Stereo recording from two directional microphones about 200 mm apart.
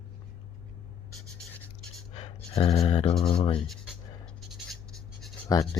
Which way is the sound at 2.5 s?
25° left (ahead or behind).